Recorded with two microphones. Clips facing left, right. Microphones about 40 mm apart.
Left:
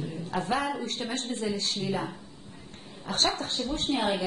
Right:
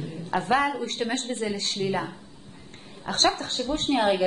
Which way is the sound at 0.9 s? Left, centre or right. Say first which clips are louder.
Right 4 dB; right.